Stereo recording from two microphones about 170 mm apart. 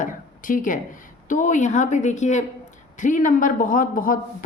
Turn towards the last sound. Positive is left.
turn(degrees=55)  # may be behind; listen again after turning